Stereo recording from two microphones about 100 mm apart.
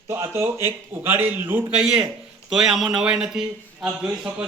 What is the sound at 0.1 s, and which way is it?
A man's voice, 25° right (ahead or behind).